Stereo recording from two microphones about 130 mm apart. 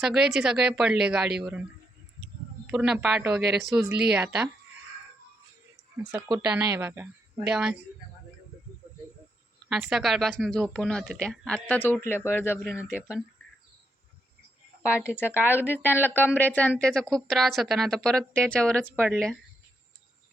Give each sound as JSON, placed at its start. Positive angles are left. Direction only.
{"t": 0.0, "sound": "speech", "side_deg": -5}
{"t": 2.6, "sound": "speech", "side_deg": -5}
{"t": 6.3, "sound": "speech", "side_deg": -10}
{"t": 9.6, "sound": "speech", "side_deg": 0}
{"t": 12.9, "sound": "speech", "side_deg": -10}
{"t": 15.1, "sound": "speech", "side_deg": 15}